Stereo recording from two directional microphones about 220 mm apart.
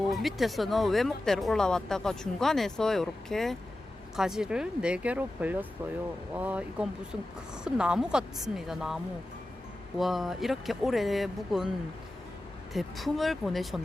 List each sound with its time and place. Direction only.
0.1 s speech: centre (ahead or behind)
10.0 s speech: centre (ahead or behind)
12.7 s speech: centre (ahead or behind)